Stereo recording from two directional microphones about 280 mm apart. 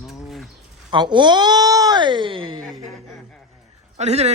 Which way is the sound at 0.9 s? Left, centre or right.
Centre.